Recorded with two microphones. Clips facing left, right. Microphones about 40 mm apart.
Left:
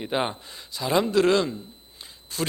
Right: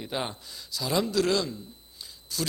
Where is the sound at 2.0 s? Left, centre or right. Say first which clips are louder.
Left 1 dB; left.